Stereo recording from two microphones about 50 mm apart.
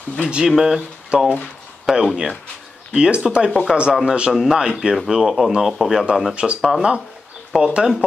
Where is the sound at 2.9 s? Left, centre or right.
Centre.